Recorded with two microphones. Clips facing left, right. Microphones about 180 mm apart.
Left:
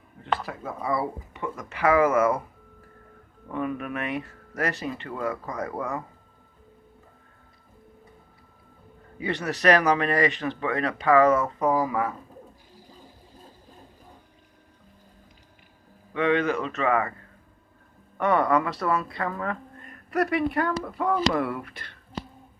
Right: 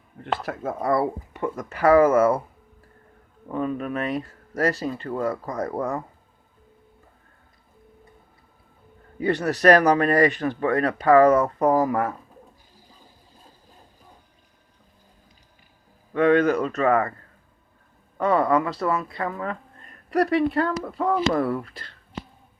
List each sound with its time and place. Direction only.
0.2 s speech: 55° right (ahead or behind)
1.4 s speech: 40° right (ahead or behind)
3.5 s speech: 30° right (ahead or behind)
9.1 s speech: 40° right (ahead or behind)
16.1 s speech: 45° right (ahead or behind)
18.2 s speech: 25° right (ahead or behind)